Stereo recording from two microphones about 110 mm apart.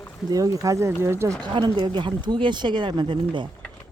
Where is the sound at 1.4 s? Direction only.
45° right (ahead or behind).